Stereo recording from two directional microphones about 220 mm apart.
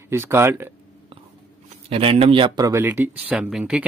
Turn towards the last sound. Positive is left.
turn(degrees=-5)  # may be behind; listen again after turning